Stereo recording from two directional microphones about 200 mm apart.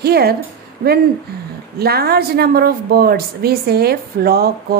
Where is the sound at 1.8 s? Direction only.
50° right (ahead or behind).